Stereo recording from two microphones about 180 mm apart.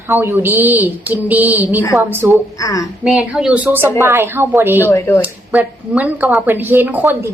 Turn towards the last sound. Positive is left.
turn(degrees=-10)  # may be behind; listen again after turning